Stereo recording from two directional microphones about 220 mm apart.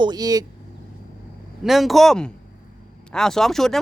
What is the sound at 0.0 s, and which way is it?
Speech, 20° right (ahead or behind).